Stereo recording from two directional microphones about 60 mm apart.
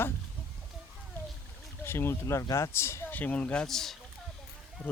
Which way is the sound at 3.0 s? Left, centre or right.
Left.